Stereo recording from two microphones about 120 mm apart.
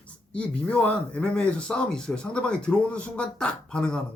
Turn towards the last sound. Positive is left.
turn(degrees=10)  # may be behind; listen again after turning